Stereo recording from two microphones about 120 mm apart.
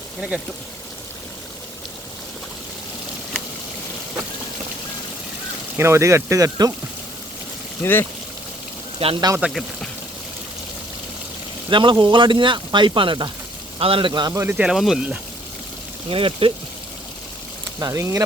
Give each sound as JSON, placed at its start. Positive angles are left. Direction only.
{"t": 5.7, "sound": "speech", "side_deg": -20}
{"t": 7.8, "sound": "speech", "side_deg": 20}
{"t": 9.0, "sound": "speech", "side_deg": -55}
{"t": 9.4, "sound": "speech", "side_deg": 0}
{"t": 11.7, "sound": "speech", "side_deg": -40}
{"t": 14.1, "sound": "speech", "side_deg": -35}
{"t": 14.4, "sound": "speech", "side_deg": -10}
{"t": 16.0, "sound": "speech", "side_deg": -50}
{"t": 17.7, "sound": "speech", "side_deg": -25}